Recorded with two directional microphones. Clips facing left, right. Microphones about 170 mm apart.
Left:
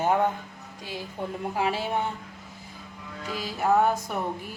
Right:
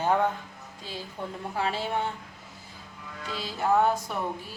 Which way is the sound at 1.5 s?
15° left (ahead or behind).